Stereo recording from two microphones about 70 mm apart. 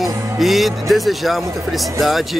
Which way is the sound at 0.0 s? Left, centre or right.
Centre.